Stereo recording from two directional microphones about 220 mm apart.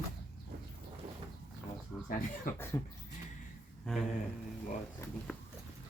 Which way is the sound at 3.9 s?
Centre (ahead or behind).